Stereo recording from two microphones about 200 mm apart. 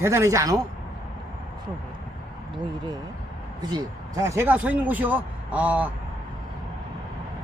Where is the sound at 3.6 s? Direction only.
20° right (ahead or behind).